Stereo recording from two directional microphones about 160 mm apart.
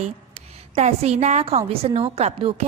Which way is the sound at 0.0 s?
40° right (ahead or behind).